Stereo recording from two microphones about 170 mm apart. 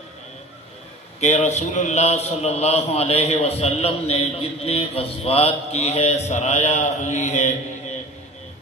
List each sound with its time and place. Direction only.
1.2 s a man's voice: 40° left (ahead or behind)